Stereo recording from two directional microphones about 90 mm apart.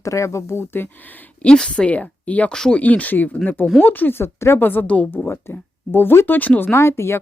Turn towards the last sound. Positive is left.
turn(degrees=30)  # may be behind; listen again after turning